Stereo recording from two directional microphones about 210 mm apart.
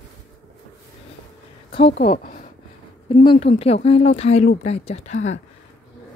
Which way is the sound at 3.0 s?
25° left (ahead or behind).